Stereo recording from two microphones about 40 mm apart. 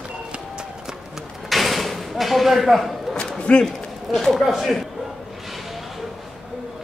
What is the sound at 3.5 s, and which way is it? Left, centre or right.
Speech, left.